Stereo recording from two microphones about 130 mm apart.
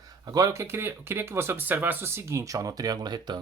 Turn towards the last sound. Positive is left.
turn(degrees=-35)  # may be behind; listen again after turning